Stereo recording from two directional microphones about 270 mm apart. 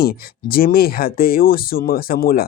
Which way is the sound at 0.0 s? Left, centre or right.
Left.